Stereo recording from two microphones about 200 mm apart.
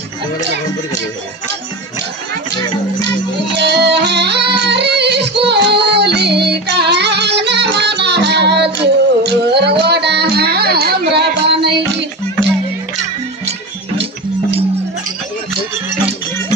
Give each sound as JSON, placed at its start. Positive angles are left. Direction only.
{"t": 3.5, "sound": "music", "side_deg": -55}